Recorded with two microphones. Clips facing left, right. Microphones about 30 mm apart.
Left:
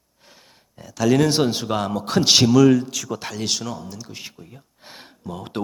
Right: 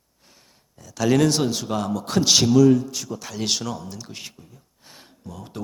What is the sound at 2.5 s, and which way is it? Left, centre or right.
Speech, left.